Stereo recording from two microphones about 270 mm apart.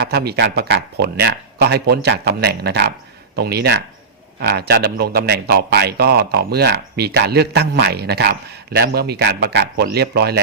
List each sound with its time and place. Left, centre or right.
0.0 s speech: right